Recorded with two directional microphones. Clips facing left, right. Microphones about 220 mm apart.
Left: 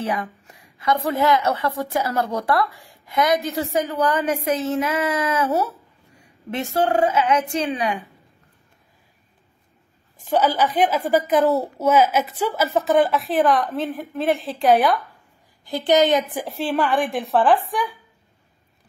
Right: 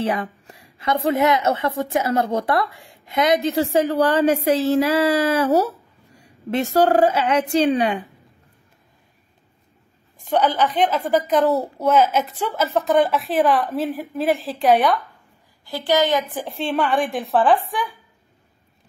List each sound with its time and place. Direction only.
0.0 s a woman's voice: 30° right (ahead or behind)
6.5 s a woman's voice: 35° right (ahead or behind)
10.3 s a woman's voice: 5° left (ahead or behind)
15.6 s a woman's voice: 20° left (ahead or behind)
16.4 s a child's voice: centre (ahead or behind)